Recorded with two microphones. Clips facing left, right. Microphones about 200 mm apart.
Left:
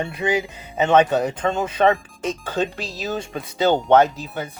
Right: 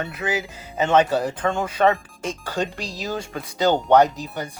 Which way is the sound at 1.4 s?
20° left (ahead or behind).